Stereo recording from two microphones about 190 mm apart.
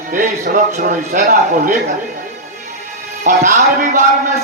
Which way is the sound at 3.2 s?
40° right (ahead or behind).